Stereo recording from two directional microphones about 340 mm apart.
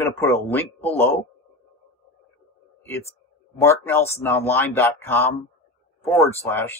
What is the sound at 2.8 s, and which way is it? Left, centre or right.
Speech, centre.